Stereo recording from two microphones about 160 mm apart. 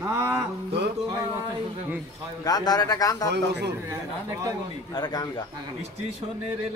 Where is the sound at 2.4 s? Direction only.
25° left (ahead or behind).